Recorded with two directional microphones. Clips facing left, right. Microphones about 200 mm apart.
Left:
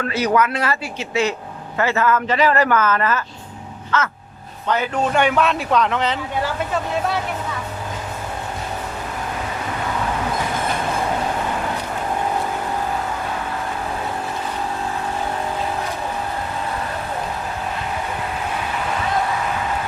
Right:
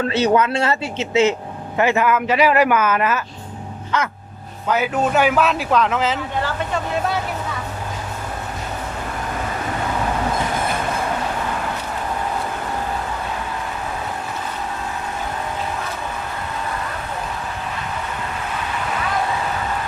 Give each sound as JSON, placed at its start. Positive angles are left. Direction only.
{"t": 0.0, "sound": "speech", "side_deg": -25}